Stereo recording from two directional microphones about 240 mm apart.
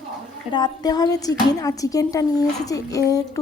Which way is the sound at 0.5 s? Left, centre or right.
Centre.